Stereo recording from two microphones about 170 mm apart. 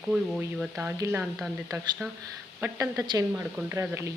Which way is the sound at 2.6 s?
15° right (ahead or behind).